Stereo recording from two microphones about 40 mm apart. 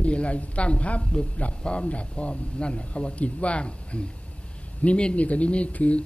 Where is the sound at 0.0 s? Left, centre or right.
Left.